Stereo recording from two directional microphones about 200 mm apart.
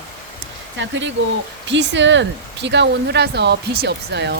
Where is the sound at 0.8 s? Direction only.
65° right (ahead or behind).